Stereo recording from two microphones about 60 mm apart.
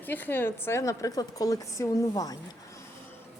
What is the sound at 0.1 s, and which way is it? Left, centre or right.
Speech, left.